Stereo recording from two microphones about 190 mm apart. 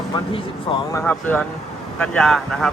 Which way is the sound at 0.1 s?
25° left (ahead or behind).